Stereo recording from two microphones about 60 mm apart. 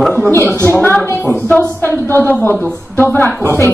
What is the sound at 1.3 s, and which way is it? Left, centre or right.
Speech, left.